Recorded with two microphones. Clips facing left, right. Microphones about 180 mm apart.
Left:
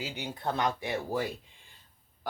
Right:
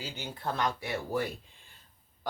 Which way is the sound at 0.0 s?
20° left (ahead or behind).